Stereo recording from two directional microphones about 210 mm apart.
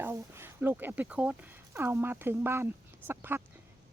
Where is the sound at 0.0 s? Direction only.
10° right (ahead or behind).